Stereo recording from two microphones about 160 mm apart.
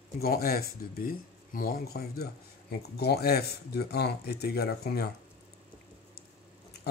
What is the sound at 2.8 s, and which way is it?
Speech, 90° left.